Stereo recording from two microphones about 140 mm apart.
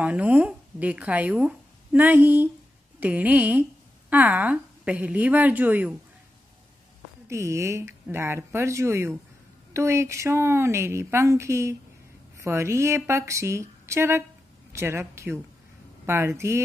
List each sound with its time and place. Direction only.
0.0 s a woman's voice: 10° right (ahead or behind)
7.2 s a woman's voice: 20° right (ahead or behind)